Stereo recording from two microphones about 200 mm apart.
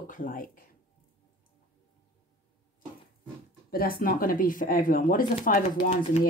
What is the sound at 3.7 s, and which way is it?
Speech, 45° left (ahead or behind).